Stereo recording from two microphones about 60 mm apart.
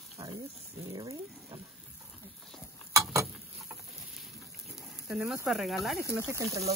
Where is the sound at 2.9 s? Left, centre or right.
Right.